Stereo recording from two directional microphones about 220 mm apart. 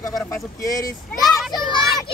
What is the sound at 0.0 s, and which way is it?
Speech, 15° left (ahead or behind).